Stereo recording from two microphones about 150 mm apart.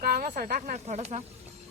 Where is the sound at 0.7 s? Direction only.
50° right (ahead or behind).